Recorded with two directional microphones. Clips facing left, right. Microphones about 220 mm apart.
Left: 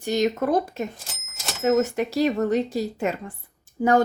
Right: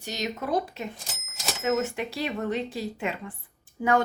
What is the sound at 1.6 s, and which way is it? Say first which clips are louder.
Speech: left 6 dB; 40° left (ahead or behind).